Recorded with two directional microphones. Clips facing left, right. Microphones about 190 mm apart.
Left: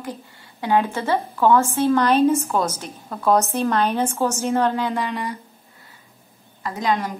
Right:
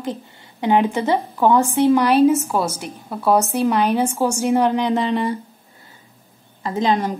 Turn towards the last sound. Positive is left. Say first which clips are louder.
# right 4 dB
turn(degrees=-25)  # may be behind; listen again after turning